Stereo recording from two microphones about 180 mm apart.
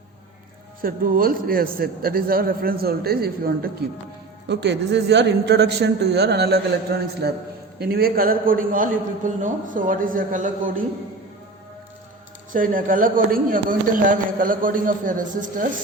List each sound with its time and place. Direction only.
0.8 s a man's voice: 50° right (ahead or behind)
4.4 s a man's voice: 75° right (ahead or behind); by 10.8 s 50° right (ahead or behind)
12.5 s speech: 50° right (ahead or behind)